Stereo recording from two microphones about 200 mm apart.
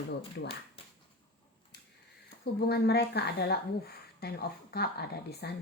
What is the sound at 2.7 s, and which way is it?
A woman's voice, 55° left (ahead or behind).